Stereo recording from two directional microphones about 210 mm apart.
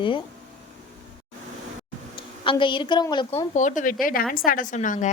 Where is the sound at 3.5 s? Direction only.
35° left (ahead or behind).